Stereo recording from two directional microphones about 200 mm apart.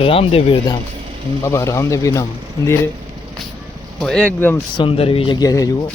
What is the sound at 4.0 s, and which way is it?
Speech, 5° left (ahead or behind).